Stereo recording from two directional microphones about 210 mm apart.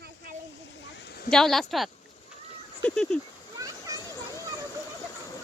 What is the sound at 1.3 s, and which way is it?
Speech, centre (ahead or behind).